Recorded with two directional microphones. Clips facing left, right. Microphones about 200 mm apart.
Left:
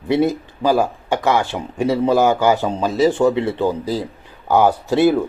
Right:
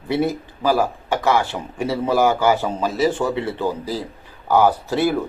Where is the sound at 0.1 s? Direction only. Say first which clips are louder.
Left 4 dB; 20° left (ahead or behind).